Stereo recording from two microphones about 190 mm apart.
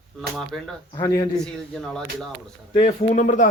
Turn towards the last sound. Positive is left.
turn(degrees=40)  # may be behind; listen again after turning